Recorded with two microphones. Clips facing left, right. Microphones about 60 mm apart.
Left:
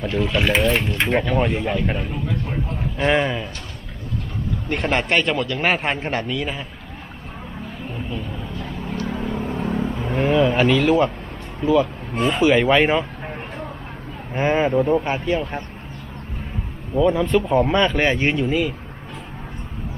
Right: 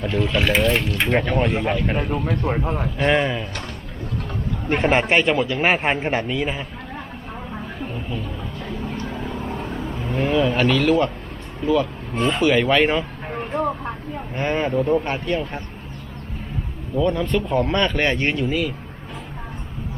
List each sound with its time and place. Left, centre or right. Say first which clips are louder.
0.0 s speech: even; centre
2.2 s speech: right 4 dB; right
3.0 s speech: left 1 dB; centre
4.7 s speech: right 3 dB; centre
9.3 s vehicle: left 3 dB; left
9.6 s vehicle: left 4 dB; centre
11.6 s speech: left 2 dB; centre
14.3 s speech: left 3 dB; centre
16.9 s speech: left 3 dB; centre